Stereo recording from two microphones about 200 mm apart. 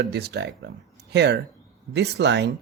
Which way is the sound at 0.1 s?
55° right (ahead or behind).